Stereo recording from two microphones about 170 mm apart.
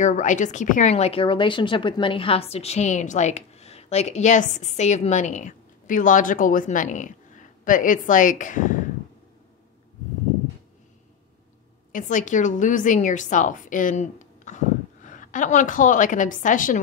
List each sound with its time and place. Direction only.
0.0 s a woman's voice: 45° left (ahead or behind)
11.9 s a woman's voice: 45° left (ahead or behind)